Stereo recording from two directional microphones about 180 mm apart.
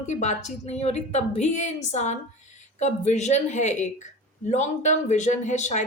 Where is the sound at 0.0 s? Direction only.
40° left (ahead or behind).